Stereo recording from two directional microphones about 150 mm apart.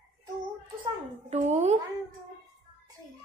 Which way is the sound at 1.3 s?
50° right (ahead or behind).